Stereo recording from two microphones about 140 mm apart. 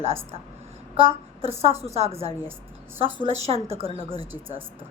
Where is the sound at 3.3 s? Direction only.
45° right (ahead or behind).